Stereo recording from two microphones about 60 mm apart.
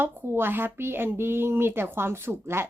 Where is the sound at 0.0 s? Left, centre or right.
Right.